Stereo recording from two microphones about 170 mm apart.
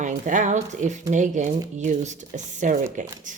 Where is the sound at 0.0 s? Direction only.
45° right (ahead or behind).